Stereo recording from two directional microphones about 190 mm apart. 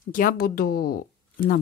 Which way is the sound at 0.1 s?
45° left (ahead or behind).